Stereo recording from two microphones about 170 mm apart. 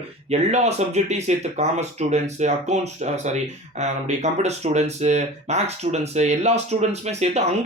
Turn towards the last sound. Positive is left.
turn(degrees=-40)  # may be behind; listen again after turning